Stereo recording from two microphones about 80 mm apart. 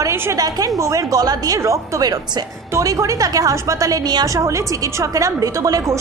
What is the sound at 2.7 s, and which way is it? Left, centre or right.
A woman's voice, right.